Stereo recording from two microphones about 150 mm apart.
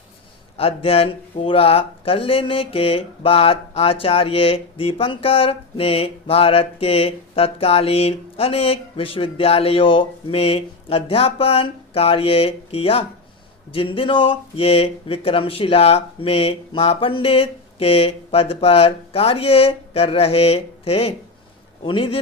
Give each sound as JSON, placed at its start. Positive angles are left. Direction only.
{"t": 0.5, "sound": "speech", "side_deg": 40}